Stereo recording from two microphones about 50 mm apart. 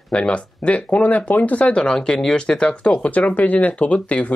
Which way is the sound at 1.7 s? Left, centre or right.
Centre.